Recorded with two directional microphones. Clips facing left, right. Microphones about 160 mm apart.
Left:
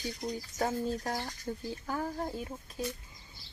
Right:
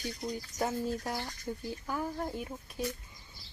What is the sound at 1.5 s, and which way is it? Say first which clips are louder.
Speech: even; 15° left (ahead or behind).